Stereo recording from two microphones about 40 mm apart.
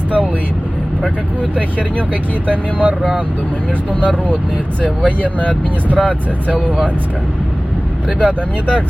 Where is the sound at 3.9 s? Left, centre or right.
Left.